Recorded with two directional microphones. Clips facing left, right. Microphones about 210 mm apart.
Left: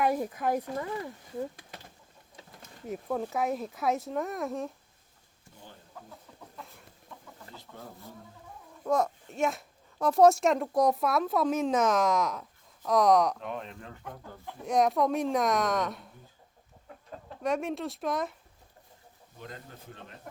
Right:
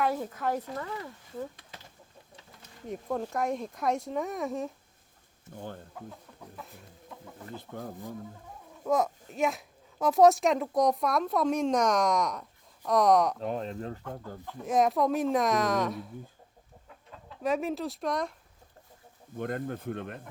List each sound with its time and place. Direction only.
0.0 s speech: 15° left (ahead or behind)
2.9 s a child's voice: 5° left (ahead or behind)
5.5 s speech: 55° right (ahead or behind)
7.5 s speech: 55° right (ahead or behind)
8.8 s a child's voice: centre (ahead or behind)
13.4 s speech: 35° right (ahead or behind)
14.6 s a child's voice: centre (ahead or behind)
17.4 s a child's voice: centre (ahead or behind)
19.4 s speech: 55° right (ahead or behind)